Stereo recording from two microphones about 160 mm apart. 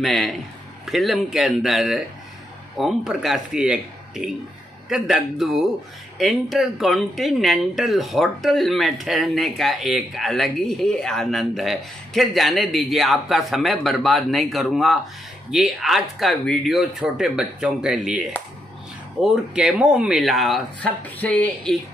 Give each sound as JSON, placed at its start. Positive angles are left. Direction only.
{"t": 0.0, "sound": "speech", "side_deg": 0}
{"t": 19.2, "sound": "speech", "side_deg": -5}